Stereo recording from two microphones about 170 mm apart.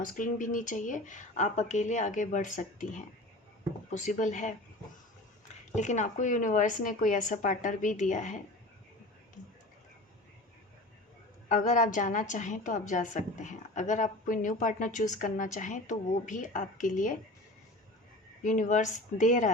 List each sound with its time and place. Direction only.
0.0 s a woman's voice: 50° left (ahead or behind)
5.7 s a woman's voice: 45° left (ahead or behind)
11.4 s a woman's voice: 45° left (ahead or behind)
18.4 s a woman's voice: 50° left (ahead or behind)